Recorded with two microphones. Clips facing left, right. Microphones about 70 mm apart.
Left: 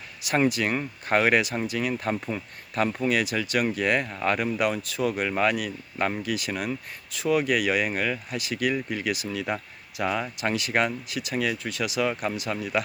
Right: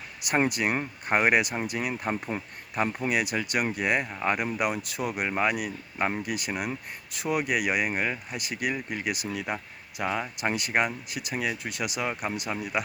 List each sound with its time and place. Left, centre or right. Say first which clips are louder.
0.6 s speech: left 1 dB; right
1.0 s speech: left 1 dB; centre
8.0 s speech: left 2 dB; centre
8.4 s speech: left 4 dB; centre